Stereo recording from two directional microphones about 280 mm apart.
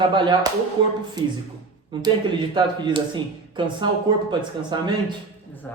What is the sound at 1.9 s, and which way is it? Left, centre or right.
Speech, centre.